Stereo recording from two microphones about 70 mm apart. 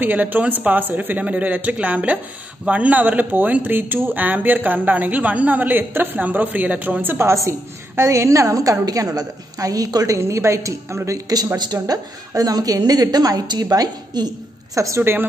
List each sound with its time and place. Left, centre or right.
0.0 s speech: right
7.4 s a woman's voice: right
10.1 s a woman's voice: right
11.5 s a woman's voice: right
15.0 s a woman's voice: right